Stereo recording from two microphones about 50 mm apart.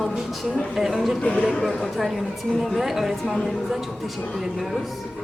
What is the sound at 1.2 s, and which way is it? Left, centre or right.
Speech, left.